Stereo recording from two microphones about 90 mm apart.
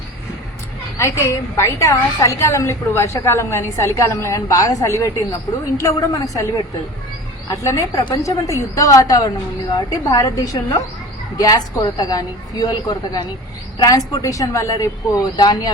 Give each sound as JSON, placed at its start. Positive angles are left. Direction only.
{"t": 0.9, "sound": "a woman's voice", "side_deg": 30}
{"t": 7.5, "sound": "a woman's voice", "side_deg": 40}